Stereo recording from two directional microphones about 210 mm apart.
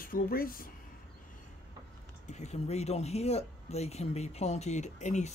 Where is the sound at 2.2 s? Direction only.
35° left (ahead or behind).